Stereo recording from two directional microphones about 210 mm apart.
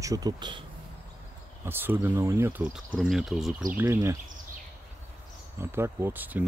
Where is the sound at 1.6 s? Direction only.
10° right (ahead or behind).